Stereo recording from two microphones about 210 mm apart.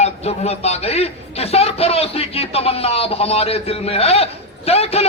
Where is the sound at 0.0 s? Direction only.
30° left (ahead or behind).